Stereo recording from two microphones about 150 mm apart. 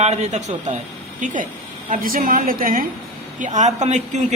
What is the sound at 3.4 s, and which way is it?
Speech, 55° right (ahead or behind).